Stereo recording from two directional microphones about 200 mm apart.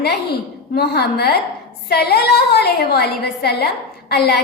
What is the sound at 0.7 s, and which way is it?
A woman's voice, 55° left (ahead or behind).